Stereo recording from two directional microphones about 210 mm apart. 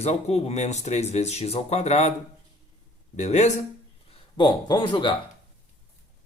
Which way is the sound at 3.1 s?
30° left (ahead or behind).